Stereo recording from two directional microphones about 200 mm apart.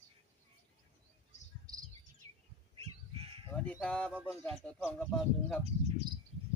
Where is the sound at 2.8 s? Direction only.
30° right (ahead or behind).